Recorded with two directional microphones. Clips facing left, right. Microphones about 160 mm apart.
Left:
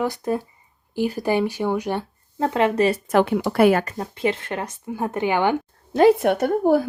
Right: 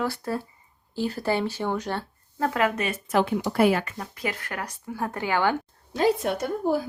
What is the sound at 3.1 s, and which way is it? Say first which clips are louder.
Speech: left 5 dB; 60° left (ahead or behind).